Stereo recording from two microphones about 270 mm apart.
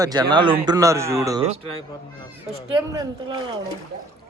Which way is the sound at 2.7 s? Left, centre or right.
Centre.